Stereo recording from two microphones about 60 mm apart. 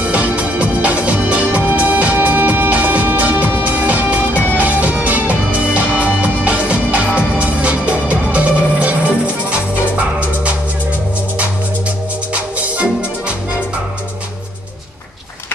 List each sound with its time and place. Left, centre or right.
0.0 s music: right